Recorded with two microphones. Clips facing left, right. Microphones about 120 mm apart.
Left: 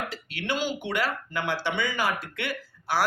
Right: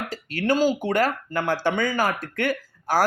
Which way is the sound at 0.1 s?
40° right (ahead or behind).